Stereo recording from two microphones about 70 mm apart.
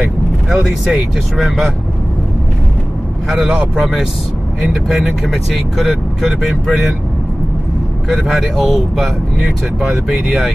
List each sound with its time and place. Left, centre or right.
0.0 s speech: centre
3.3 s speech: centre
8.1 s speech: centre